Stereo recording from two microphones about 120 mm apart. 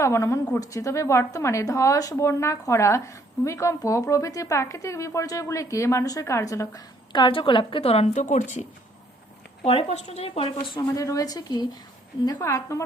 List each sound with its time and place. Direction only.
0.0 s a woman's voice: 25° left (ahead or behind); by 8.6 s 80° left
9.6 s speech: 55° left (ahead or behind)
10.8 s a woman's voice: 30° left (ahead or behind)